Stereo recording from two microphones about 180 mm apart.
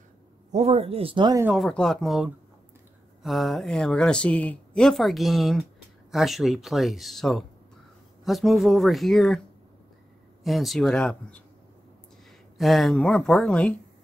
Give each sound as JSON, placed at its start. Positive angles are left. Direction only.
{"t": 0.5, "sound": "speech", "side_deg": -35}
{"t": 1.4, "sound": "speech", "side_deg": -5}
{"t": 10.4, "sound": "speech", "side_deg": 0}
{"t": 12.5, "sound": "speech", "side_deg": 0}